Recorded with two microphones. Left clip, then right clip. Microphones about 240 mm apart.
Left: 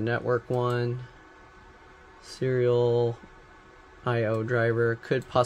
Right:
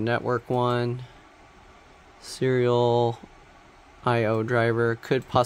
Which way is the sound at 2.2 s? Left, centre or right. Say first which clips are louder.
Right 2 dB; right.